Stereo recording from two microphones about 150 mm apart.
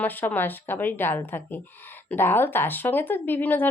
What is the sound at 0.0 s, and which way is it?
Speech, 10° left (ahead or behind).